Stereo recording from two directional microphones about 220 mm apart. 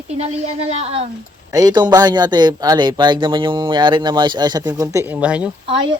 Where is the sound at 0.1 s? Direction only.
30° right (ahead or behind).